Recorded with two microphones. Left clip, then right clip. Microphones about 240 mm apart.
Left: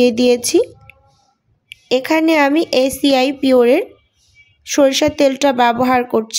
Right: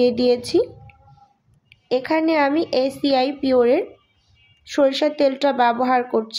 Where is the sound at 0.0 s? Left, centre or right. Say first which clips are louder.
Left 5 dB; left.